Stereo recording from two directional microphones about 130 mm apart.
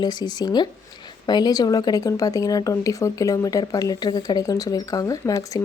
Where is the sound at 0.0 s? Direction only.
35° left (ahead or behind).